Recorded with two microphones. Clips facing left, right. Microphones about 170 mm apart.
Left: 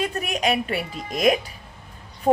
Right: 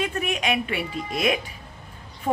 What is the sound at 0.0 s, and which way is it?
A woman's voice, 40° left (ahead or behind).